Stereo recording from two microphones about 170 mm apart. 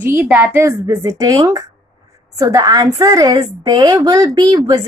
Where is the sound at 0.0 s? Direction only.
10° right (ahead or behind).